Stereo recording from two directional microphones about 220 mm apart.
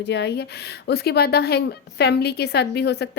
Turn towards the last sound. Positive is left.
turn(degrees=50)  # may be behind; listen again after turning